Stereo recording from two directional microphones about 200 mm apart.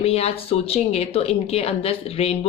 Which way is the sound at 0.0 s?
30° left (ahead or behind).